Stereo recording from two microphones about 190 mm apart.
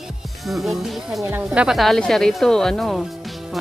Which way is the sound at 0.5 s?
Centre (ahead or behind).